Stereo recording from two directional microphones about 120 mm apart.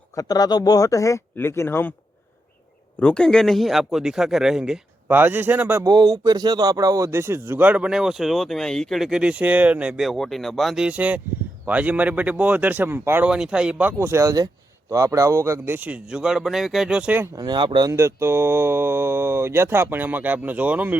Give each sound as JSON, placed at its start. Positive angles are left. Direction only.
{"t": 0.2, "sound": "speech", "side_deg": 30}
{"t": 3.0, "sound": "speech", "side_deg": 10}
{"t": 5.0, "sound": "speech", "side_deg": -15}
{"t": 5.8, "sound": "speech", "side_deg": -30}
{"t": 17.3, "sound": "speech", "side_deg": -35}
{"t": 17.9, "sound": "speech", "side_deg": -20}